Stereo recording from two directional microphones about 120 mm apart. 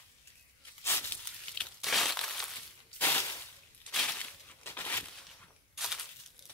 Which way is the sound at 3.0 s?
20° left (ahead or behind).